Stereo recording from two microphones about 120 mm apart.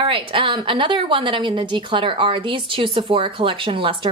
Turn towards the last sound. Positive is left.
turn(degrees=-45)  # may be behind; listen again after turning